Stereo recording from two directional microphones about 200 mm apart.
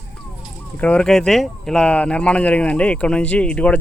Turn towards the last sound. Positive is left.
turn(degrees=5)  # may be behind; listen again after turning